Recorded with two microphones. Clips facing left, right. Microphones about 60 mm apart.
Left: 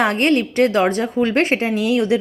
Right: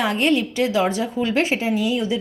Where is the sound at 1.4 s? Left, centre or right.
Left.